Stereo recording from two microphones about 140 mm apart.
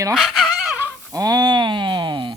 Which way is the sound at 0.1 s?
Centre (ahead or behind).